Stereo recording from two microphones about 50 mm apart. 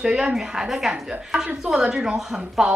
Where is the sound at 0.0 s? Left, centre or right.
Centre.